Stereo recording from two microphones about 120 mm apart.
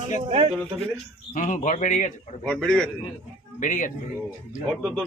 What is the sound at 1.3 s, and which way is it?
Speech, 90° left.